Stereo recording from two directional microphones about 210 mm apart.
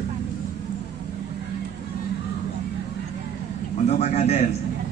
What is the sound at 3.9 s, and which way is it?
Speech, 30° left (ahead or behind).